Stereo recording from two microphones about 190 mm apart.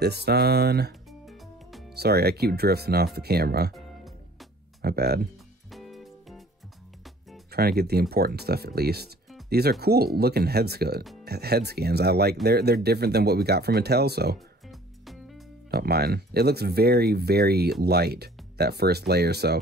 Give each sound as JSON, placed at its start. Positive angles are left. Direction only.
{"t": 0.0, "sound": "speech", "side_deg": -60}
{"t": 2.0, "sound": "speech", "side_deg": -55}
{"t": 4.8, "sound": "speech", "side_deg": -55}
{"t": 5.7, "sound": "music", "side_deg": 0}
{"t": 7.5, "sound": "speech", "side_deg": -55}
{"t": 15.7, "sound": "speech", "side_deg": -55}